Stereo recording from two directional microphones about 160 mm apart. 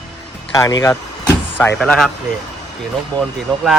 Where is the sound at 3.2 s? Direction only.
Centre (ahead or behind).